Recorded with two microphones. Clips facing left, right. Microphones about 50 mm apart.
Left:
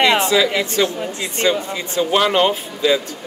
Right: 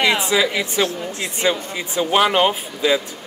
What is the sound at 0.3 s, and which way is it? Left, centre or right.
Speech, centre.